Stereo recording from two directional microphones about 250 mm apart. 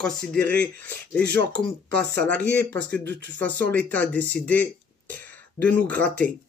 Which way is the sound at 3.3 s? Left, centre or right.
Centre.